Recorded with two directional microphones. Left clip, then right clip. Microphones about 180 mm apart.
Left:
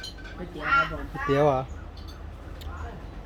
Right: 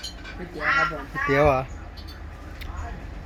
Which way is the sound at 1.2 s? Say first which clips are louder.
Right 3 dB; 10° left (ahead or behind).